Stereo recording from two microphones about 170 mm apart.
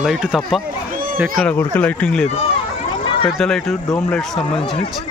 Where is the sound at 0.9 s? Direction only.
55° right (ahead or behind).